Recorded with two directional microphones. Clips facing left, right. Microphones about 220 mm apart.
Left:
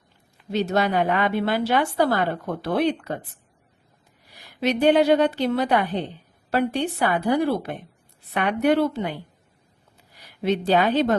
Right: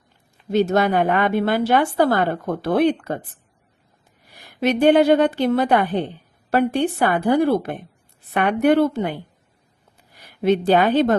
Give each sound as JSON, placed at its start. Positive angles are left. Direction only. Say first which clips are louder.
{"t": 0.5, "sound": "a woman's voice", "louder": "right 4 dB", "side_deg": -50}
{"t": 4.3, "sound": "a woman's voice", "louder": "right 3 dB", "side_deg": -50}
{"t": 10.2, "sound": "speech", "louder": "right 5 dB", "side_deg": -50}